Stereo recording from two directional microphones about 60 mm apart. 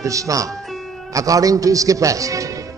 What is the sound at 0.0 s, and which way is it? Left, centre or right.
A man's voice, right.